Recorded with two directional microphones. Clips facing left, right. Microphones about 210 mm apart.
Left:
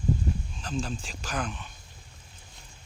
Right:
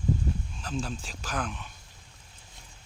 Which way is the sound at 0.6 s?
Centre (ahead or behind).